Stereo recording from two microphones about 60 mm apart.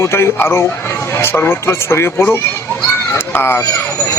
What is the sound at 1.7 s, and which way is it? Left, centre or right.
Speech, left.